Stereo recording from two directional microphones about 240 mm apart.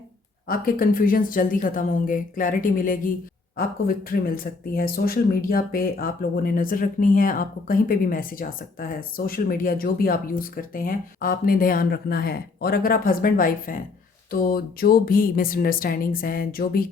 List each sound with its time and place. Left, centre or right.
0.4 s speech: left